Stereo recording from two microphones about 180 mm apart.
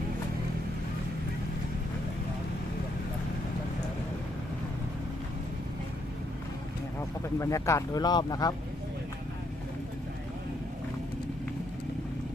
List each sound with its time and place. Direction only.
7.3 s speech: 15° left (ahead or behind)